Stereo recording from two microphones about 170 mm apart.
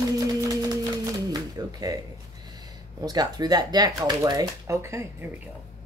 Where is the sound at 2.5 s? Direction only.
20° right (ahead or behind).